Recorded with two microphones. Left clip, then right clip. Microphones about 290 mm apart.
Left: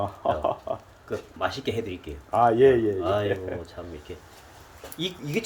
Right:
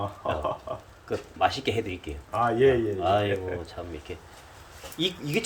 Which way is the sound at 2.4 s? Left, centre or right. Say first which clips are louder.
Left 4 dB; left.